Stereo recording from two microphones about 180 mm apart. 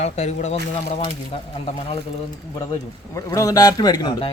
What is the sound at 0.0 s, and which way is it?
Speech, 40° left (ahead or behind).